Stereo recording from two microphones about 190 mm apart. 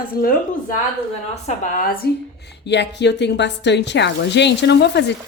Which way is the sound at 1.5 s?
45° left (ahead or behind).